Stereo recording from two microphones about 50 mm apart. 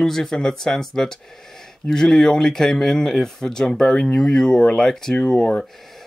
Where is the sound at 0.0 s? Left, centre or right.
Centre.